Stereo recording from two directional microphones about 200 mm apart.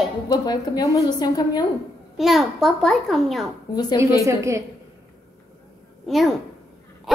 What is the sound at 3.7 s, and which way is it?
Speech, 20° left (ahead or behind).